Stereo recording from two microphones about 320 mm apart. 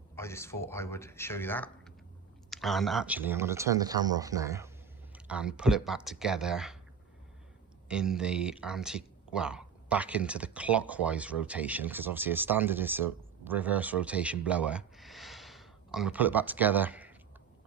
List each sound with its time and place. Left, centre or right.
0.2 s speech: centre
7.9 s speech: centre